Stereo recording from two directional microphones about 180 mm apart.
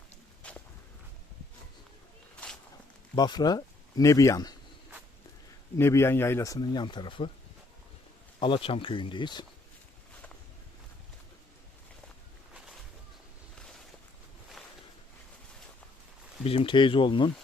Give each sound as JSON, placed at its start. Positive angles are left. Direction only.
{"t": 0.4, "sound": "walk", "side_deg": 5}
{"t": 3.2, "sound": "speech", "side_deg": 25}
{"t": 5.7, "sound": "speech", "side_deg": 15}
{"t": 8.4, "sound": "speech", "side_deg": 30}
{"t": 16.4, "sound": "speech", "side_deg": 30}